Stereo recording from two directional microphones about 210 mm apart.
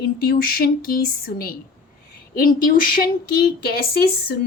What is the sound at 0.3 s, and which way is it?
Speech, 45° left (ahead or behind).